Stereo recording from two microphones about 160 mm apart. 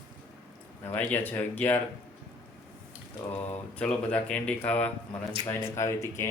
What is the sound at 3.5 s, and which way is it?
A man's voice, 10° left (ahead or behind).